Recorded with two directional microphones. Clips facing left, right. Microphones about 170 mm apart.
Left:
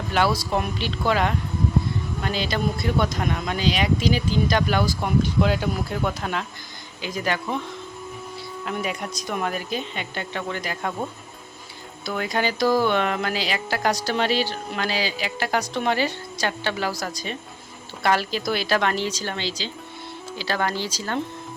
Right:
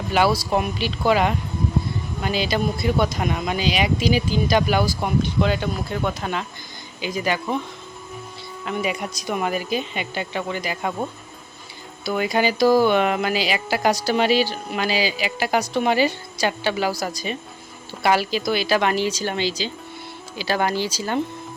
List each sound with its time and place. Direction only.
0.1 s speech: 5° right (ahead or behind)
8.6 s speech: centre (ahead or behind)
12.0 s speech: 10° right (ahead or behind)